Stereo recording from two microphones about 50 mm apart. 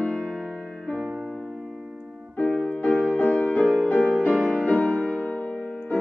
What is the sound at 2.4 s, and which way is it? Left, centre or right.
Music, left.